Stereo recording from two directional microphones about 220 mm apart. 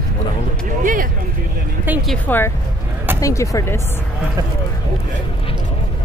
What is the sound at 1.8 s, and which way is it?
Music, 5° right (ahead or behind).